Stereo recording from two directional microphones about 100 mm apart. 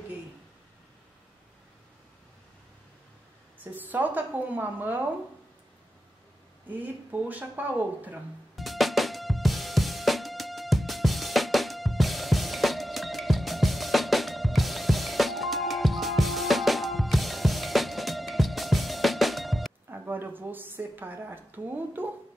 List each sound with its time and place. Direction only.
3.5 s speech: 15° right (ahead or behind)
6.7 s speech: 15° right (ahead or behind)
8.5 s music: centre (ahead or behind)
19.9 s a sound: 20° right (ahead or behind)